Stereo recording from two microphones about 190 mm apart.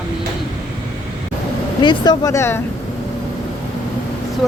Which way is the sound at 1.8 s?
20° left (ahead or behind).